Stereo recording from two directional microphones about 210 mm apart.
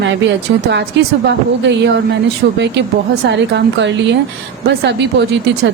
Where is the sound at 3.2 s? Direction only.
55° right (ahead or behind).